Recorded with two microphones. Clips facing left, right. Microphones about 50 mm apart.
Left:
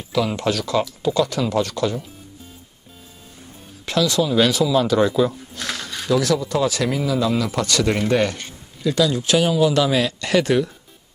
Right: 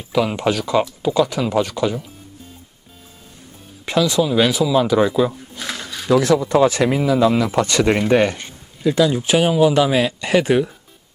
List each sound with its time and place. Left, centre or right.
0.1 s speech: centre
3.8 s speech: centre
6.1 s speech: right